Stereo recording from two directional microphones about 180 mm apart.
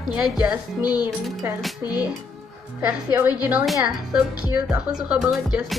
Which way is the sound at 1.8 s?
20° left (ahead or behind).